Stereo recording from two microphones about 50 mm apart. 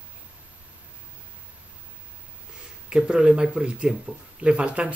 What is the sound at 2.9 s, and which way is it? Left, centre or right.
Speech, centre.